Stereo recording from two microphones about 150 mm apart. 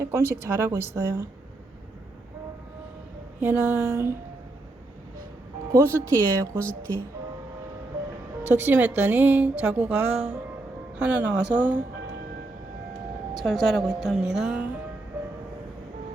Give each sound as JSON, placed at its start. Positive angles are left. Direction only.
{"t": 0.0, "sound": "a woman's voice", "side_deg": -15}
{"t": 3.4, "sound": "a woman's voice", "side_deg": -15}
{"t": 5.7, "sound": "speech", "side_deg": -20}
{"t": 8.4, "sound": "a woman's voice", "side_deg": -15}
{"t": 13.3, "sound": "speech", "side_deg": 0}